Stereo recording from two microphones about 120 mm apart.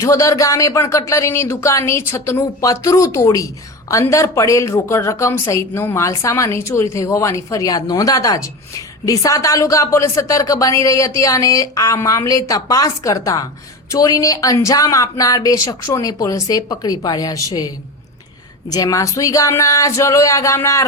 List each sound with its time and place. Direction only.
0.0 s a woman's voice: 25° left (ahead or behind)
18.7 s a woman's voice: 30° left (ahead or behind)